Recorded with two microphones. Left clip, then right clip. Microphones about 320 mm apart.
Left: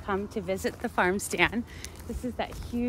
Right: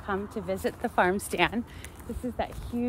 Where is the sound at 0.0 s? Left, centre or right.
Centre.